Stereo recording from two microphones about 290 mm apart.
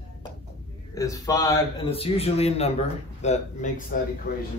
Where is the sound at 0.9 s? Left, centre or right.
Centre.